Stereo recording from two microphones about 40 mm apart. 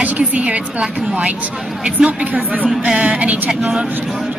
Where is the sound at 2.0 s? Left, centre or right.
Centre.